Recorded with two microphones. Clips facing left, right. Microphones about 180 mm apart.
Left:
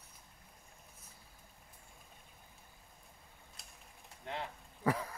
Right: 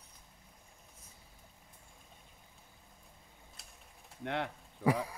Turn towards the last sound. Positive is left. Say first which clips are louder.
# right 3 dB
turn(degrees=-10)  # may be behind; listen again after turning